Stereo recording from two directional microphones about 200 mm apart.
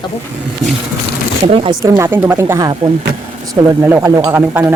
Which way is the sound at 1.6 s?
25° right (ahead or behind).